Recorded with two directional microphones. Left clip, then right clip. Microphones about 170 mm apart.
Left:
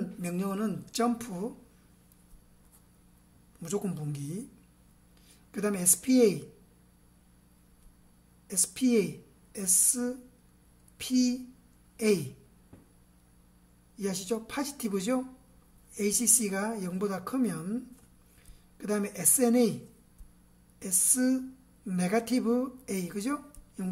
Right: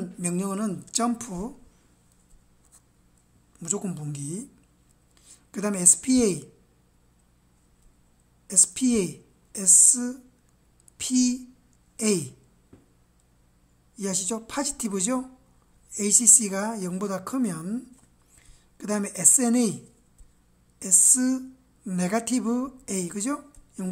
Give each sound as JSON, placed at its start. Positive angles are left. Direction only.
{"t": 0.0, "sound": "speech", "side_deg": -35}
{"t": 3.5, "sound": "a woman's voice", "side_deg": -25}
{"t": 8.7, "sound": "speech", "side_deg": -35}
{"t": 13.9, "sound": "speech", "side_deg": -35}
{"t": 20.8, "sound": "a woman's voice", "side_deg": -30}